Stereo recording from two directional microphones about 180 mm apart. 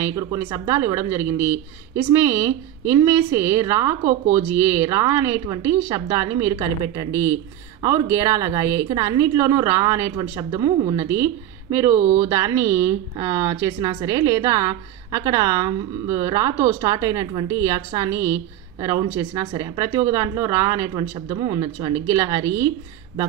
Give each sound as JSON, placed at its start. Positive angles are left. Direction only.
{"t": 0.0, "sound": "a woman's voice", "side_deg": -15}